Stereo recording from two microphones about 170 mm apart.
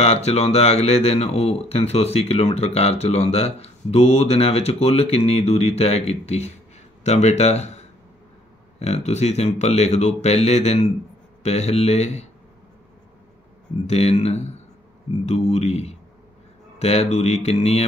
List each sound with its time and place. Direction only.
0.0 s speech: 35° left (ahead or behind)
13.8 s speech: 40° left (ahead or behind)